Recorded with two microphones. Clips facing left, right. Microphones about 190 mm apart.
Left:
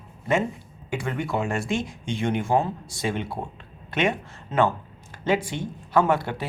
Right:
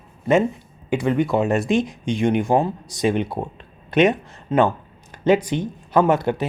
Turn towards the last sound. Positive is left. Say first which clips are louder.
# right 4 dB
turn(degrees=-20)  # may be behind; listen again after turning